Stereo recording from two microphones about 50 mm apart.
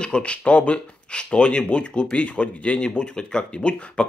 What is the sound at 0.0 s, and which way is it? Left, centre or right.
Speech, left.